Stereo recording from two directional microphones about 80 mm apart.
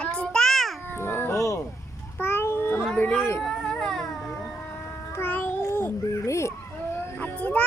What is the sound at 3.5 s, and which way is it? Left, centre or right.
Music, centre.